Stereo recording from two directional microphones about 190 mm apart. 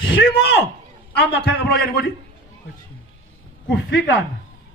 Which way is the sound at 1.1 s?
60° left (ahead or behind).